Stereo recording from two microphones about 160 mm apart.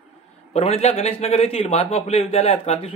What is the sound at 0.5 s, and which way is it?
A man's voice, 40° left (ahead or behind).